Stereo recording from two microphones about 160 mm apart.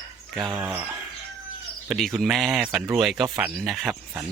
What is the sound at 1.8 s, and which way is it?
Speech, centre (ahead or behind).